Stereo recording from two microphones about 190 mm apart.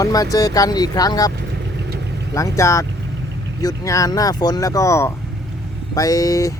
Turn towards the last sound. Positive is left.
turn(degrees=15)  # may be behind; listen again after turning